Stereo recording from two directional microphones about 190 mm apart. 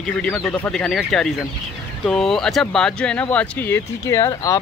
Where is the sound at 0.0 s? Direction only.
10° left (ahead or behind).